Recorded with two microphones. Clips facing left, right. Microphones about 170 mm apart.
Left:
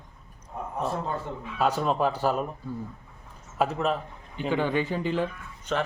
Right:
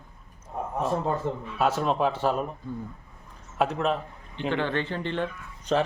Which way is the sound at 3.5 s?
Centre (ahead or behind).